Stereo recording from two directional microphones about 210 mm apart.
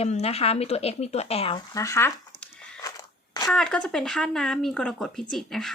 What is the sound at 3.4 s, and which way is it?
Speech, 5° left (ahead or behind).